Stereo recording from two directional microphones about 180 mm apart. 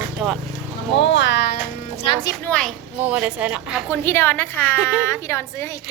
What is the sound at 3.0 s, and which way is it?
Speech, 10° right (ahead or behind).